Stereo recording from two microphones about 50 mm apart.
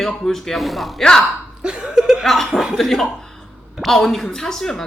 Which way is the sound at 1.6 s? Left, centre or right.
Centre.